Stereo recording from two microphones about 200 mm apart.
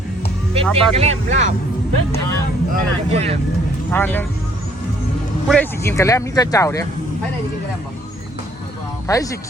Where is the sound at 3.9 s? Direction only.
10° left (ahead or behind).